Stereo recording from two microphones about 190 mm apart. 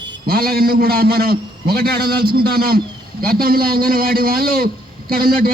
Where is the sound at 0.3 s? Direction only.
55° right (ahead or behind).